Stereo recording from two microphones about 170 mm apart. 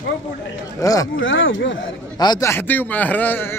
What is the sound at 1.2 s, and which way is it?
Speech, 90° left.